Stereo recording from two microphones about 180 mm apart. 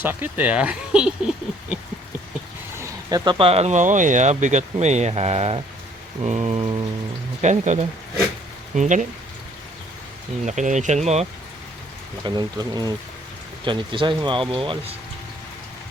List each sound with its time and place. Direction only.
0.0 s speech: 10° right (ahead or behind)
2.7 s speech: 20° right (ahead or behind); by 9.0 s 45° right (ahead or behind)
10.4 s speech: 40° right (ahead or behind)
12.2 s speech: 25° right (ahead or behind)